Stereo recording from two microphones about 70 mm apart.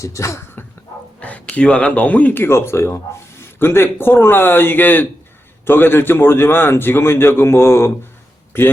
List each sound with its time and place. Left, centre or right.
0.0 s speech: left
1.2 s a man's voice: left
2.4 s speech: left